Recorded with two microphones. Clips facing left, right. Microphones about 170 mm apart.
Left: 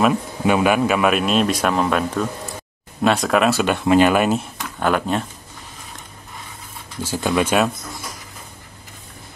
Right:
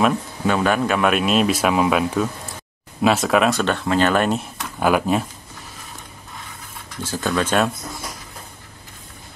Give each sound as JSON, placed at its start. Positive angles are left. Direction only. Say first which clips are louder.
{"t": 0.5, "sound": "speech", "louder": "left 2 dB", "side_deg": 10}
{"t": 7.0, "sound": "speech", "louder": "left 2 dB", "side_deg": 10}